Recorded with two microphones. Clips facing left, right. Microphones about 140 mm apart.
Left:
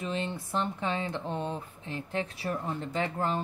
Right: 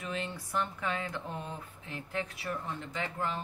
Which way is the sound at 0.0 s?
25° left (ahead or behind).